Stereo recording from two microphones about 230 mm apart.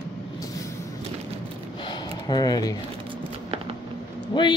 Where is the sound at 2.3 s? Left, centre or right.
Centre.